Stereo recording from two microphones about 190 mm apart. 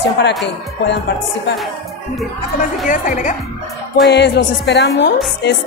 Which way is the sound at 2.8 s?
45° left (ahead or behind).